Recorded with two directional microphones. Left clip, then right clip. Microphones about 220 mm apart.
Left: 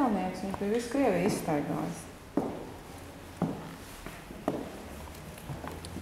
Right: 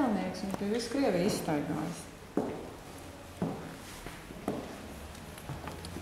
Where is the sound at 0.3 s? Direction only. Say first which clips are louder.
Left 3 dB; 5° left (ahead or behind).